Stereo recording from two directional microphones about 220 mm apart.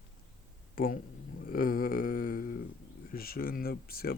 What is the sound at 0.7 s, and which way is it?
Speech, 40° left (ahead or behind).